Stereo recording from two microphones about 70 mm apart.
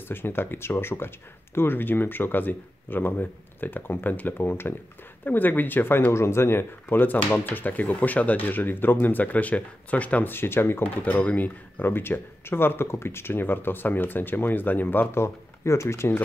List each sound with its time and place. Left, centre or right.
0.1 s speech: left
11.0 s speech: left